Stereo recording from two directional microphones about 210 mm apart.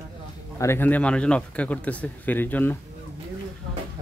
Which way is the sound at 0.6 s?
10° left (ahead or behind).